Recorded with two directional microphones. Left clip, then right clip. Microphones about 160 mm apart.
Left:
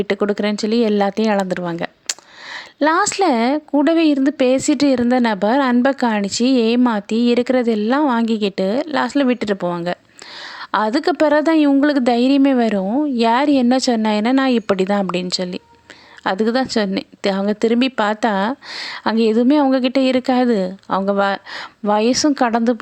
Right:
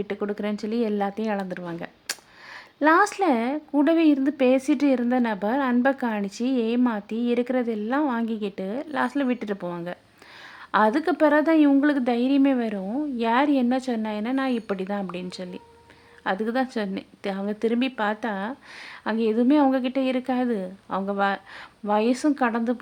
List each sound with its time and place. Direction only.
0.0 s speech: 35° left (ahead or behind)